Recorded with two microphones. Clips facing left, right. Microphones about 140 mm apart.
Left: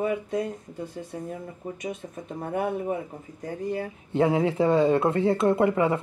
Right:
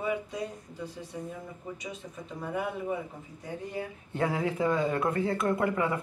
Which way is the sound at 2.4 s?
50° left (ahead or behind).